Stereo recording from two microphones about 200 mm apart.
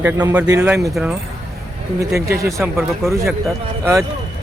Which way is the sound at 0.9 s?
Centre (ahead or behind).